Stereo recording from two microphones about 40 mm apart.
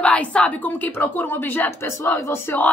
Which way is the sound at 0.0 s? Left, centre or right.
Left.